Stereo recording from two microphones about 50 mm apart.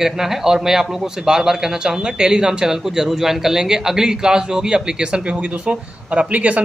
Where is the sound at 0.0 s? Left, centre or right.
Centre.